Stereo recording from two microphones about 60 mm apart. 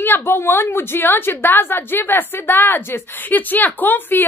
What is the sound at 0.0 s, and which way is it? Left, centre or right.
A woman's voice, left.